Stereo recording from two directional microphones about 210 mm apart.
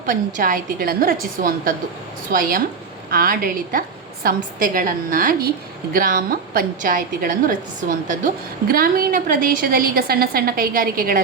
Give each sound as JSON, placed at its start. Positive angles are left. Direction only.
{"t": 0.0, "sound": "a woman's voice", "side_deg": -40}